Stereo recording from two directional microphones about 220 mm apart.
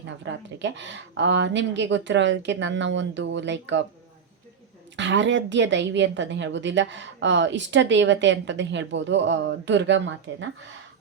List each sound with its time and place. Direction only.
0.2 s a woman's voice: 55° right (ahead or behind)
4.9 s a woman's voice: 55° right (ahead or behind)